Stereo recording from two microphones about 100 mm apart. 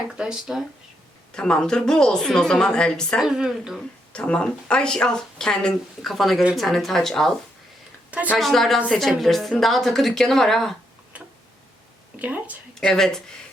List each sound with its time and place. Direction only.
0.2 s a woman's voice: 5° right (ahead or behind)
1.3 s speech: 5° left (ahead or behind)
3.2 s a woman's voice: 5° right (ahead or behind)
4.1 s a woman's voice: 10° left (ahead or behind)
8.1 s speech: 15° right (ahead or behind)
8.4 s a woman's voice: centre (ahead or behind)
12.2 s speech: 15° right (ahead or behind)
12.8 s a woman's voice: 5° left (ahead or behind)